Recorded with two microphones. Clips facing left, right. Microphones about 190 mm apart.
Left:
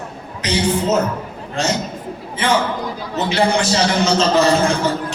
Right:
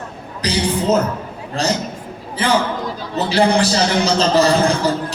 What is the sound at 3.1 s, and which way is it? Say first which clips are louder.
Speech: right 2 dB; 35° right (ahead or behind).